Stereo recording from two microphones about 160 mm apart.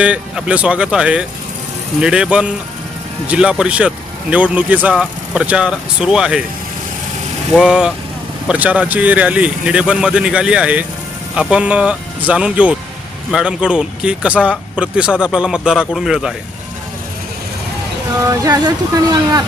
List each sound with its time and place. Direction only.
0.0 s a man's voice: 5° right (ahead or behind)
7.5 s a man's voice: 5° right (ahead or behind)
18.3 s speech: 25° right (ahead or behind)